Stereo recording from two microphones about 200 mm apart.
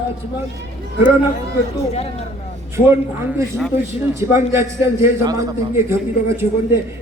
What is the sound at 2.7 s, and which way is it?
A man's voice, 10° right (ahead or behind).